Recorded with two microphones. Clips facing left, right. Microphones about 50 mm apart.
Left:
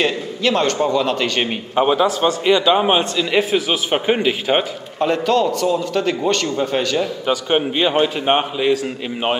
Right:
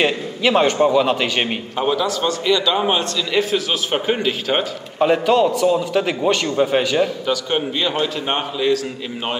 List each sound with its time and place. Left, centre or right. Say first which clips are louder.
0.0 s a man's voice: right 1 dB; centre
1.8 s a man's voice: left 4 dB; left
4.9 s a man's voice: right 2 dB; centre
7.2 s a man's voice: left 3 dB; left